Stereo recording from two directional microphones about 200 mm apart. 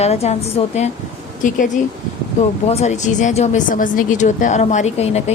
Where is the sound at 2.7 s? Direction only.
35° left (ahead or behind).